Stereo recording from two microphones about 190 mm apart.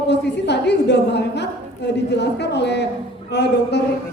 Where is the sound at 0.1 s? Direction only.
65° left (ahead or behind).